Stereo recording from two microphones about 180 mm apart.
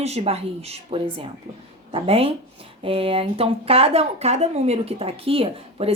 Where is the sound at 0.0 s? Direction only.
35° right (ahead or behind).